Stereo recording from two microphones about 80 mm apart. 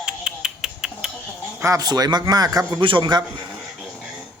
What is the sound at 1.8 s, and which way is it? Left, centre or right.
Speech, right.